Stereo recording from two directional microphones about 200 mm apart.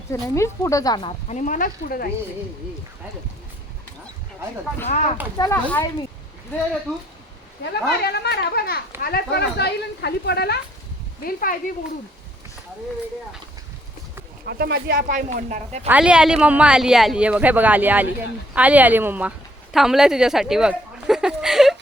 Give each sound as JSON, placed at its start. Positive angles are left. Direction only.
{"t": 0.1, "sound": "speech", "side_deg": 15}
{"t": 1.3, "sound": "speech", "side_deg": 40}
{"t": 5.4, "sound": "speech", "side_deg": 10}
{"t": 7.6, "sound": "speech", "side_deg": 55}
{"t": 14.4, "sound": "speech", "side_deg": -50}
{"t": 15.9, "sound": "speech", "side_deg": -5}